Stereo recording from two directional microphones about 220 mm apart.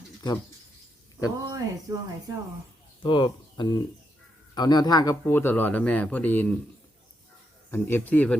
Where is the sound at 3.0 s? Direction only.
20° left (ahead or behind).